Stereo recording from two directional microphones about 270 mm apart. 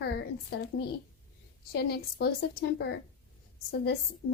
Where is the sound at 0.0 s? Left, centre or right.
Left.